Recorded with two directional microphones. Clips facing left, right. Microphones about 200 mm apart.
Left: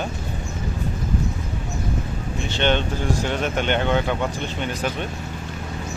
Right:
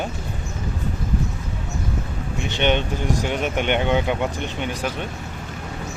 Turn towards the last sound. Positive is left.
turn(degrees=-15)  # may be behind; listen again after turning